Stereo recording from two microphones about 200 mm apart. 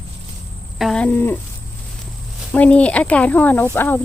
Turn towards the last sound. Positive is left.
turn(degrees=10)  # may be behind; listen again after turning